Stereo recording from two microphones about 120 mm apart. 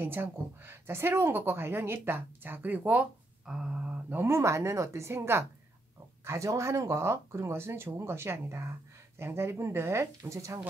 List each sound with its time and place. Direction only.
0.0 s a woman's voice: 15° right (ahead or behind)
4.2 s speech: 20° right (ahead or behind)